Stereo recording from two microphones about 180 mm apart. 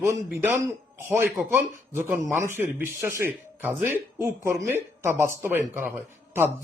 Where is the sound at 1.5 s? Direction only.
15° right (ahead or behind).